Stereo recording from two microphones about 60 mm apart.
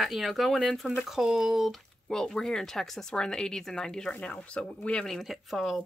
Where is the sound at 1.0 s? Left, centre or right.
Centre.